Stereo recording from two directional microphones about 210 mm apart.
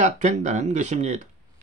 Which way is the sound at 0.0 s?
35° right (ahead or behind).